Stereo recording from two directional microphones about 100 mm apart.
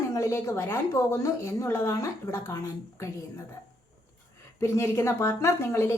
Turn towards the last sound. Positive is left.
turn(degrees=25)  # may be behind; listen again after turning